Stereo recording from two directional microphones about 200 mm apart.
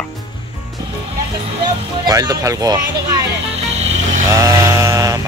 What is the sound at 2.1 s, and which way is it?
Speech, 15° right (ahead or behind).